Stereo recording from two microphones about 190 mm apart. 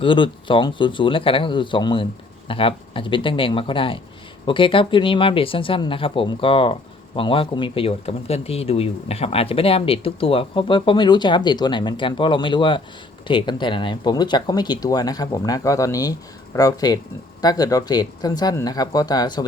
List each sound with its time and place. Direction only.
0.0 s speech: 25° left (ahead or behind)